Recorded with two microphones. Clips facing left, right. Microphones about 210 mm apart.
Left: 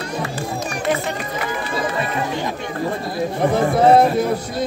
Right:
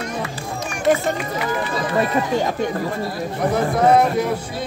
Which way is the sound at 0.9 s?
45° right (ahead or behind).